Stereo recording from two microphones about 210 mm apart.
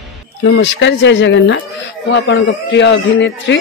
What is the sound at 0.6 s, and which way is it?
Speech, 60° left (ahead or behind).